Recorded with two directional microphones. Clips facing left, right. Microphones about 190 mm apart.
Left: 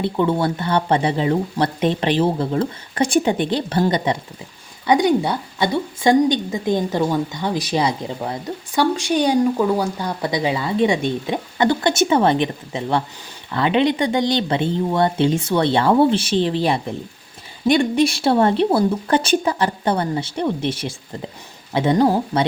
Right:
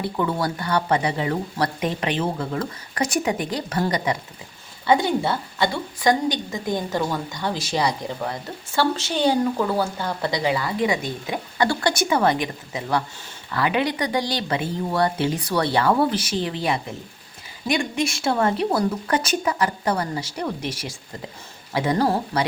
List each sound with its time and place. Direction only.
0.0 s speech: 25° left (ahead or behind)
4.9 s a woman's voice: 15° left (ahead or behind)